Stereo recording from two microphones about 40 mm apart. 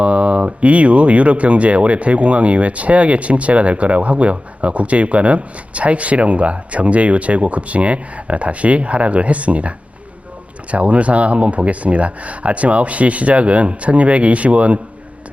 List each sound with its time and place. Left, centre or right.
0.0 s speech: right